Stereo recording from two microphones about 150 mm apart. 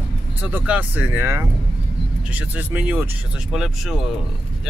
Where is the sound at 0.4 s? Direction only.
10° right (ahead or behind).